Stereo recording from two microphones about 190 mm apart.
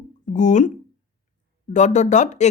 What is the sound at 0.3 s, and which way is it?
Speech, 40° left (ahead or behind).